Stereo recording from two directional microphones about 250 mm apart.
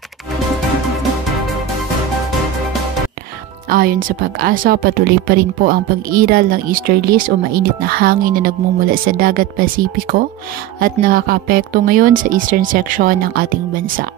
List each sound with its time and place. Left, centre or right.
3.6 s speech: right